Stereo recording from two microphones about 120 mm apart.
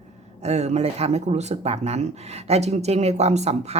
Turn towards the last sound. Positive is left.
turn(degrees=-65)  # may be behind; listen again after turning